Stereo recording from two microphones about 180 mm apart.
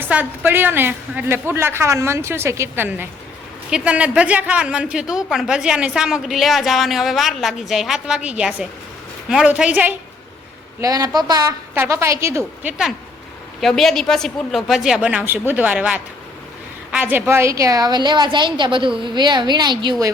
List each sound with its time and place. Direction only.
0.0 s a woman's voice: 10° right (ahead or behind)
10.8 s a woman's voice: 20° right (ahead or behind)
13.6 s a woman's voice: centre (ahead or behind); by 20.1 s 25° right (ahead or behind)